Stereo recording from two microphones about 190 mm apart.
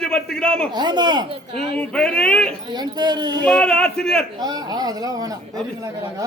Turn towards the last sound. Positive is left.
turn(degrees=-20)  # may be behind; listen again after turning